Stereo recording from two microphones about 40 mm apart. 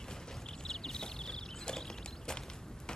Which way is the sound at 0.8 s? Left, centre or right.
Centre.